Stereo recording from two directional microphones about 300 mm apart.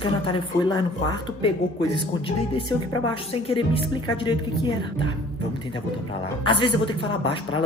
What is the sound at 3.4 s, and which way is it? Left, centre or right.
Speech, centre.